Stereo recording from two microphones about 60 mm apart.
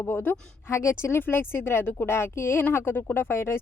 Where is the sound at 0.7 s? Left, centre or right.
Left.